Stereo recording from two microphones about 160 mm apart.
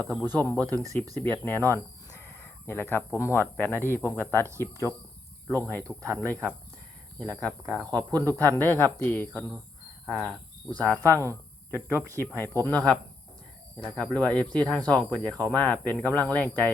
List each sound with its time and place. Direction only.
0.0 s speech: centre (ahead or behind)
0.6 s speech: 20° right (ahead or behind)
1.2 s speech: 10° left (ahead or behind)
5.9 s speech: 5° right (ahead or behind)
7.2 s speech: 10° left (ahead or behind)
10.7 s speech: 10° left (ahead or behind)